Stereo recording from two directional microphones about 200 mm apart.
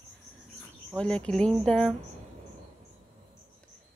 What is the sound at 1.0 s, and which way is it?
Speech, 5° left (ahead or behind).